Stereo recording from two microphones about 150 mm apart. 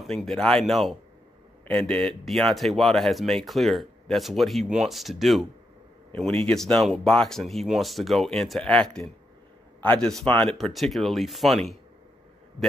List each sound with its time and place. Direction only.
0.0 s a man's voice: centre (ahead or behind)